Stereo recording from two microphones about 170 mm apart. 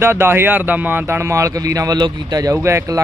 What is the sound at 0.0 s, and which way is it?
Speech, 15° right (ahead or behind).